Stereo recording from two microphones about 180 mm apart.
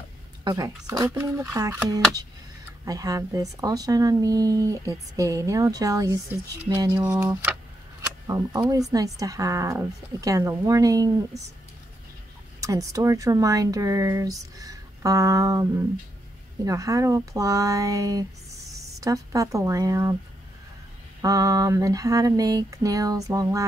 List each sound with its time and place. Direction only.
0.4 s a woman's voice: 20° right (ahead or behind)
12.5 s a woman's voice: 20° right (ahead or behind)
21.2 s speech: 20° right (ahead or behind)